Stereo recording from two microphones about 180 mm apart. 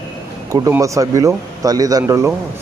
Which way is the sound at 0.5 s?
20° right (ahead or behind).